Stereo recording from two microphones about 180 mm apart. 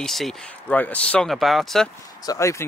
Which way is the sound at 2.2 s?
15° left (ahead or behind).